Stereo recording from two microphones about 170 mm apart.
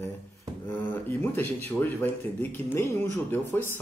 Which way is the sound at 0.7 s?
10° left (ahead or behind).